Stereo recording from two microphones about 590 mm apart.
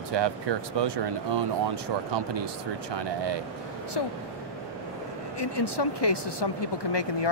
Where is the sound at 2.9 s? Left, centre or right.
Right.